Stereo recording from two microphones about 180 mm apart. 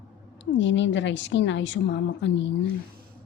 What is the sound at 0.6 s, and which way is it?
A woman's voice, 90° left.